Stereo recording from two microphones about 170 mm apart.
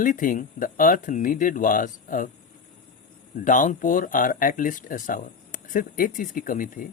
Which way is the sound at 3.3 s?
50° left (ahead or behind).